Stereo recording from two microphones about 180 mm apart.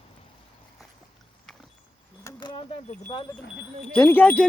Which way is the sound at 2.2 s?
25° left (ahead or behind).